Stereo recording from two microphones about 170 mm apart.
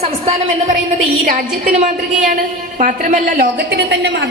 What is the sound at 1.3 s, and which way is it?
A woman's voice, 55° right (ahead or behind).